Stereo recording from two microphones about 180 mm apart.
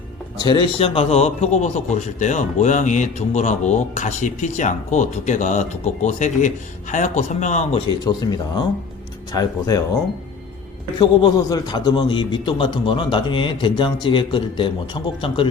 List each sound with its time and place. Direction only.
0.3 s a man's voice: 25° left (ahead or behind)
8.0 s a man's voice: 25° left (ahead or behind)
10.9 s a man's voice: 25° left (ahead or behind)